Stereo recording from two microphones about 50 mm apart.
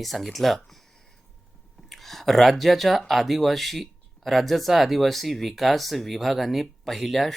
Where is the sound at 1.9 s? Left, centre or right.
Centre.